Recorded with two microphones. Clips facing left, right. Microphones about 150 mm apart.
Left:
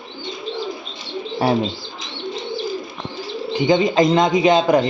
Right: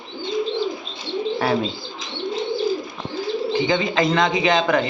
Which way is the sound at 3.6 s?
20° left (ahead or behind).